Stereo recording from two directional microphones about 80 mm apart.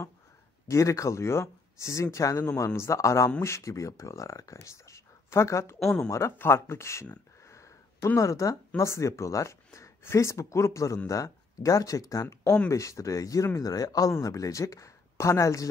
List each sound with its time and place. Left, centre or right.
0.7 s speech: left
5.8 s speech: centre
6.0 s speech: left
7.4 s a sound: left
8.2 s speech: left